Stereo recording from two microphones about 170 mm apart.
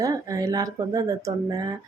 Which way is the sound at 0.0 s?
20° right (ahead or behind).